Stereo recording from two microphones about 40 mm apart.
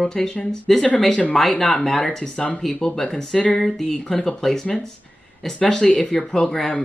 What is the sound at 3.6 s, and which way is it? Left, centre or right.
Speech, centre.